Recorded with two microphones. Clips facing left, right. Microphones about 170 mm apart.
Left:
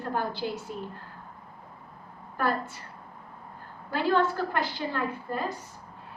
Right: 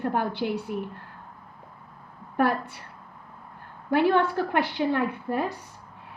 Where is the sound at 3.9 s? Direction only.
65° right (ahead or behind).